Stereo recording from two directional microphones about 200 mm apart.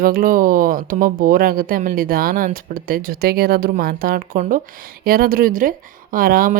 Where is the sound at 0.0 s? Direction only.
45° right (ahead or behind).